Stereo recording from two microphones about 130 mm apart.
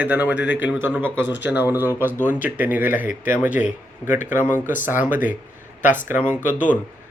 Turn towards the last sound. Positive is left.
turn(degrees=80)